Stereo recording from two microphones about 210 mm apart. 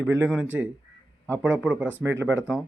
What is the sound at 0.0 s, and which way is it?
Speech, 10° right (ahead or behind).